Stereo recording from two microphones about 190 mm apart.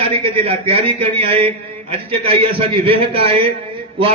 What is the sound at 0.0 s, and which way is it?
A man's voice, 30° right (ahead or behind).